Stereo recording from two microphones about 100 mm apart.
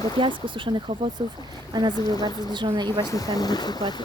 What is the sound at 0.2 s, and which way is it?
Speech, 55° right (ahead or behind).